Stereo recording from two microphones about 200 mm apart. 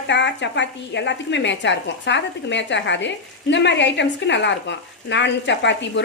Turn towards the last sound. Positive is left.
turn(degrees=65)  # may be behind; listen again after turning